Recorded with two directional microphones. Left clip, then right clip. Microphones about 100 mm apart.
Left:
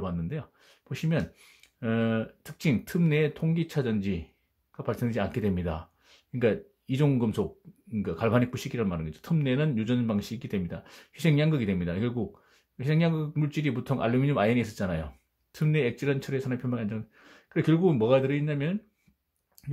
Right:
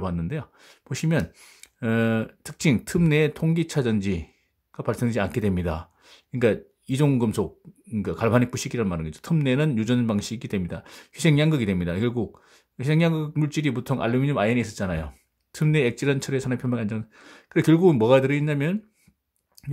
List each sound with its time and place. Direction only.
0.0 s speech: 45° right (ahead or behind); by 15.0 s 25° right (ahead or behind)
15.0 s speech: 45° right (ahead or behind)
19.6 s a sound: 30° right (ahead or behind)